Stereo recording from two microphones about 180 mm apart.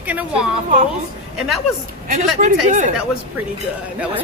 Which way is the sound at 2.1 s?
45° right (ahead or behind).